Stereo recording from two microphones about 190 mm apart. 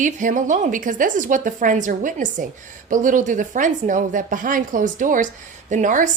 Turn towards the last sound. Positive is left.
turn(degrees=-45)  # may be behind; listen again after turning